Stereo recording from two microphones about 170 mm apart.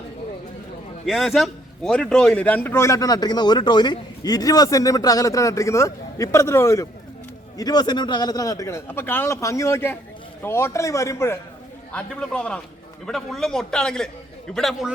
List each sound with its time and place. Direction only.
1.0 s a man's voice: centre (ahead or behind); by 11.3 s 15° left (ahead or behind)
11.9 s a man's voice: 5° left (ahead or behind)